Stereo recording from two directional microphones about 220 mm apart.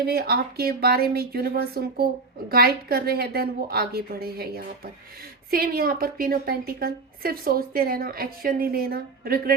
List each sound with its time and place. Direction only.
0.1 s a woman's voice: 45° right (ahead or behind)